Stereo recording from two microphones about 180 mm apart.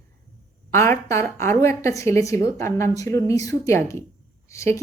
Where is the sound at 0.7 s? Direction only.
15° left (ahead or behind).